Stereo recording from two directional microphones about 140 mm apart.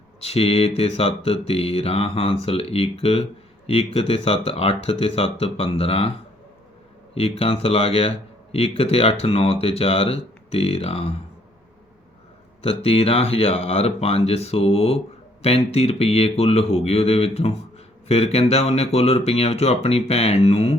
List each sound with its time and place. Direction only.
0.2 s speech: 45° left (ahead or behind)
7.1 s speech: 45° left (ahead or behind)
12.6 s speech: 45° left (ahead or behind)